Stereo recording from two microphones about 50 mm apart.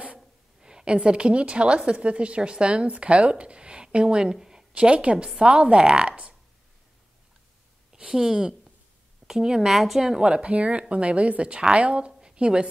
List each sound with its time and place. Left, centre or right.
0.6 s a woman's voice: centre
4.7 s a woman's voice: right
7.9 s a woman's voice: centre
10.2 s a woman's voice: right
12.2 s a sound: centre